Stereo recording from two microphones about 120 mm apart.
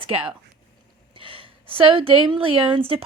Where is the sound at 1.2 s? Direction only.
45° right (ahead or behind).